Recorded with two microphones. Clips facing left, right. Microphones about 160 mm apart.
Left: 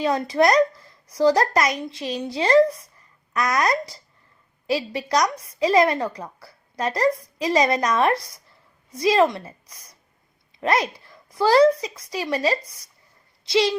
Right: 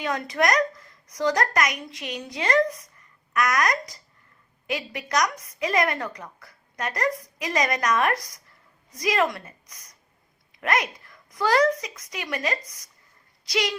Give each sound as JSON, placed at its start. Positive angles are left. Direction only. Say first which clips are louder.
{"t": 0.0, "sound": "a woman's voice", "louder": "left 6 dB", "side_deg": 30}